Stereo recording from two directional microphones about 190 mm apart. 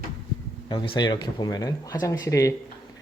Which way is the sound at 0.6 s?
25° left (ahead or behind).